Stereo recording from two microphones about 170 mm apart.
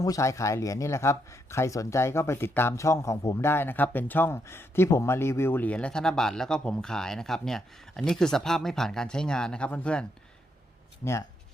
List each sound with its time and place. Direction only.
0.0 s speech: 20° left (ahead or behind)